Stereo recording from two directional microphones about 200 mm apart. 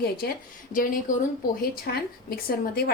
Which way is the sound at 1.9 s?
50° left (ahead or behind).